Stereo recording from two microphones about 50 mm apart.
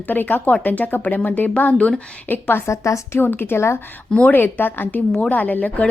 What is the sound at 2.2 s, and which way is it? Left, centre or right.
Speech, left.